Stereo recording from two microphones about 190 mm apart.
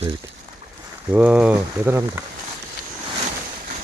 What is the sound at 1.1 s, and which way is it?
Speech, 5° right (ahead or behind).